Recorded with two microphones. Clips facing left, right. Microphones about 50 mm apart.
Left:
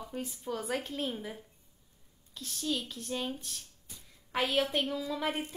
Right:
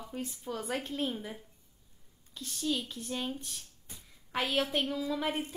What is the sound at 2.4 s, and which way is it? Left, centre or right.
A woman's voice, centre.